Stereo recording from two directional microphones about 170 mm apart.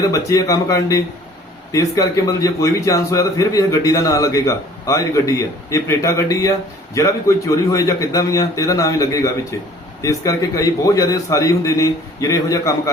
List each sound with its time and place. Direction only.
0.1 s a man's voice: 20° left (ahead or behind)